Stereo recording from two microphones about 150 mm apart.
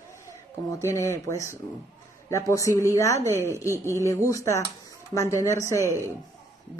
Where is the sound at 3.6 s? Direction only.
15° right (ahead or behind).